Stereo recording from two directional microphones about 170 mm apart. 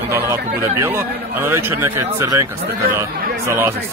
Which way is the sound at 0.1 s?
15° right (ahead or behind).